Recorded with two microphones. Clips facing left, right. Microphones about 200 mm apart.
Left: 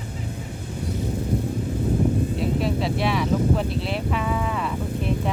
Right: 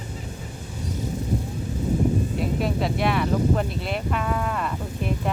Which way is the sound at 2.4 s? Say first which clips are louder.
Left 1 dB; centre (ahead or behind).